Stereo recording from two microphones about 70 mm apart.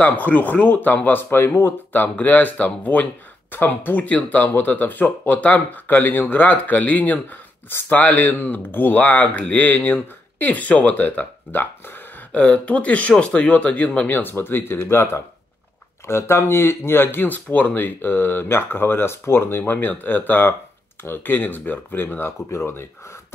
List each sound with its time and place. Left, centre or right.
0.0 s speech: left
12.3 s speech: centre; by 22.8 s left